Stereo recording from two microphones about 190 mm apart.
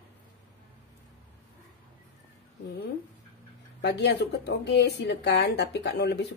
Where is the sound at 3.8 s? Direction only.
60° left (ahead or behind).